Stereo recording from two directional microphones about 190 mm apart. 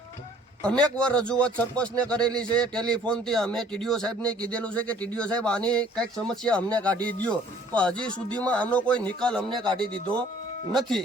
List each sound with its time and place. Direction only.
0.6 s a man's voice: 5° left (ahead or behind)
10.7 s a man's voice: centre (ahead or behind)